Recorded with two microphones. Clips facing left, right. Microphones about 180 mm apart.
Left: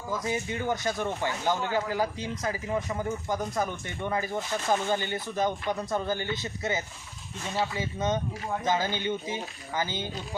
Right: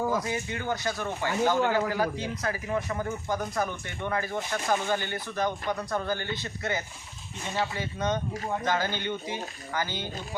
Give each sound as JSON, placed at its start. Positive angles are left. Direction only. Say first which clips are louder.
{"t": 0.3, "sound": "speech", "louder": "left 2 dB", "side_deg": 20}